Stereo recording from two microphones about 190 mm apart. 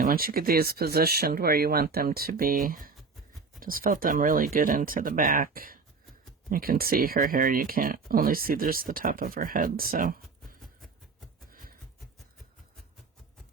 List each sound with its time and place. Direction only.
0.0 s speech: 50° right (ahead or behind)